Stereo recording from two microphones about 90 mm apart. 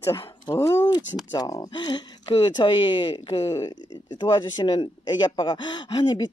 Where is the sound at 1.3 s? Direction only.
45° left (ahead or behind).